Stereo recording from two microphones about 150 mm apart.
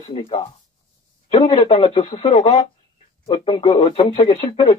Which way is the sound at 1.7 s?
45° left (ahead or behind).